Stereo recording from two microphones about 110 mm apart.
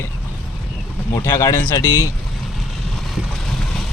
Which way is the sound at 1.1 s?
20° left (ahead or behind).